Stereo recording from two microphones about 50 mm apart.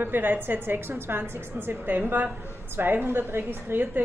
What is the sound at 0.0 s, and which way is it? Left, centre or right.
A woman's voice, right.